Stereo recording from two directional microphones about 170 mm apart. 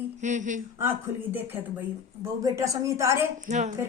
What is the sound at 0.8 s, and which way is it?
A woman's voice, 10° right (ahead or behind).